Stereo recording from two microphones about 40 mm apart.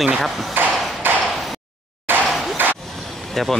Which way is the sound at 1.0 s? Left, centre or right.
Right.